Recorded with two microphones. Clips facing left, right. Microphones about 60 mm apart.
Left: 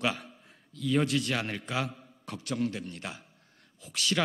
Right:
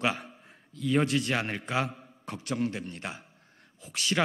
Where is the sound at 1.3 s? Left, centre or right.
Right.